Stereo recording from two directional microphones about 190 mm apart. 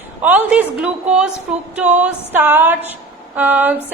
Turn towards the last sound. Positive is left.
turn(degrees=-10)  # may be behind; listen again after turning